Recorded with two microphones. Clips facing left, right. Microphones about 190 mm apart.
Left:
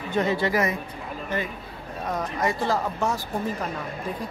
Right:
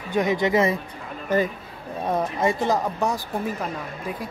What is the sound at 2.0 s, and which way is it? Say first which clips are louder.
Speech: right 4 dB; 25° right (ahead or behind).